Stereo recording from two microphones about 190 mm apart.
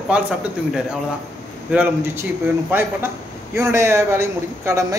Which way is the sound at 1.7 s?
10° right (ahead or behind).